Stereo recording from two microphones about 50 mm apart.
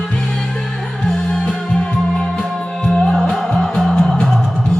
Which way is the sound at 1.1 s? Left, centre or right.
Left.